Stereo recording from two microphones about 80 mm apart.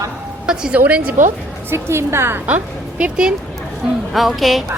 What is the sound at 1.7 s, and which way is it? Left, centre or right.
Speech, right.